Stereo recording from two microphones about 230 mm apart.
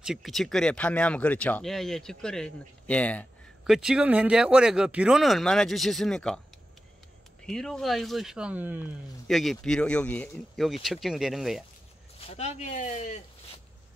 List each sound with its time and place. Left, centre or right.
0.0 s speech: centre
7.4 s speech: centre
12.2 s speech: left